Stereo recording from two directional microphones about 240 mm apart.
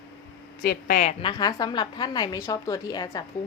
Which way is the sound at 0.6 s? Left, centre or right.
Left.